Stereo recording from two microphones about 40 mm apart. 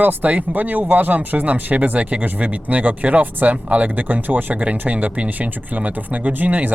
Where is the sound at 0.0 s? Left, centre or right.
Right.